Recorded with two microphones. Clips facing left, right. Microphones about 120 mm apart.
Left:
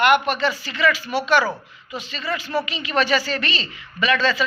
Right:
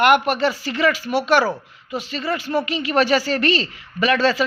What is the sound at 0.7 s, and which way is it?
Speech, 50° right (ahead or behind).